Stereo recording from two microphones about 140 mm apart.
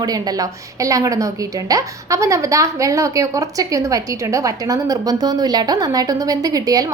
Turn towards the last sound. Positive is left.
turn(degrees=-25)  # may be behind; listen again after turning